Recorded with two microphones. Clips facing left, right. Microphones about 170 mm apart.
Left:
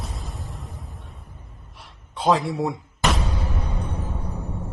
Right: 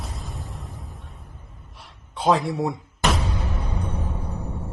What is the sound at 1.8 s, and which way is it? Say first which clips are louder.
Gasp: even; centre (ahead or behind).